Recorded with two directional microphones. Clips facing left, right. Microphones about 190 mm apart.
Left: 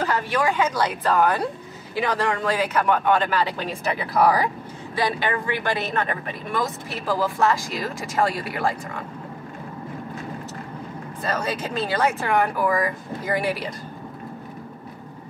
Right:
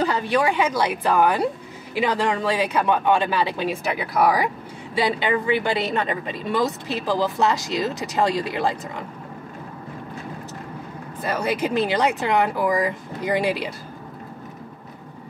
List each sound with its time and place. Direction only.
0.0 s speech: 15° right (ahead or behind)
3.8 s speech: centre (ahead or behind)
5.0 s speech: 15° right (ahead or behind)
11.2 s speech: 15° right (ahead or behind)